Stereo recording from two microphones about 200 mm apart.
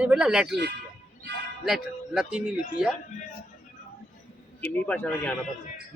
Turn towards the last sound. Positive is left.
turn(degrees=10)  # may be behind; listen again after turning